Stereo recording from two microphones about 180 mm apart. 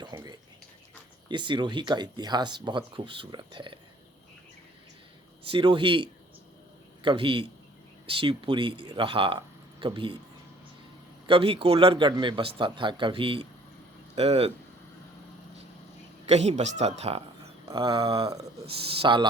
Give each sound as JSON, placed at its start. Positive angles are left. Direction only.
{"t": 0.1, "sound": "a sound", "side_deg": -20}
{"t": 1.3, "sound": "speech", "side_deg": -25}
{"t": 5.4, "sound": "speech", "side_deg": -30}
{"t": 11.3, "sound": "speech", "side_deg": -30}
{"t": 16.2, "sound": "speech", "side_deg": -40}
{"t": 17.7, "sound": "speech", "side_deg": -25}